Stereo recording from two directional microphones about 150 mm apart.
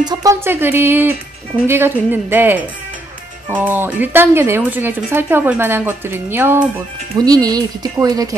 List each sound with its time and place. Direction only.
0.0 s speech: 25° right (ahead or behind)
7.2 s speech: 25° right (ahead or behind)